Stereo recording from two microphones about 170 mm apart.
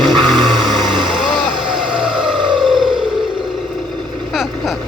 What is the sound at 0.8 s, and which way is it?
Vehicle, 25° right (ahead or behind).